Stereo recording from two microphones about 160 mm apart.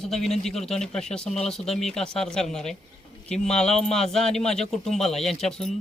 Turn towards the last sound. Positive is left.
turn(degrees=5)  # may be behind; listen again after turning